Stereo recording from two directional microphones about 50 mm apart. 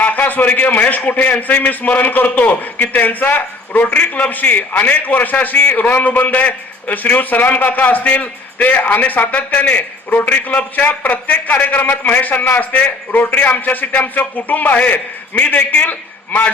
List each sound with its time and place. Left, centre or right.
0.0 s a man's voice: left